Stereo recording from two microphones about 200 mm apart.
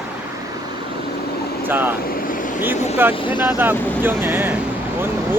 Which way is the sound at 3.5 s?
10° right (ahead or behind).